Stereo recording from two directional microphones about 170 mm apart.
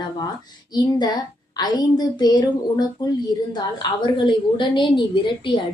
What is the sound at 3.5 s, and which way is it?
A woman's voice, 25° left (ahead or behind).